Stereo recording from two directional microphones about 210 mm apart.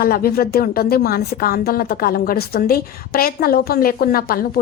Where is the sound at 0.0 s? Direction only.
45° left (ahead or behind).